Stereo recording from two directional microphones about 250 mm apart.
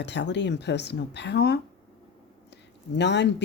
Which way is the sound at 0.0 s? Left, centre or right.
Left.